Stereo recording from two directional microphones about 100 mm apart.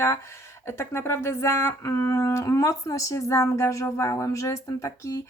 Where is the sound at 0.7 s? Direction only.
25° left (ahead or behind).